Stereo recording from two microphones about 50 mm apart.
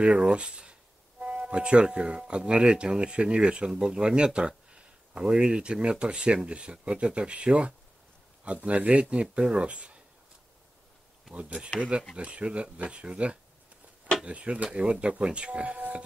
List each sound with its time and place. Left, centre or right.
0.0 s speech: right
11.3 s speech: right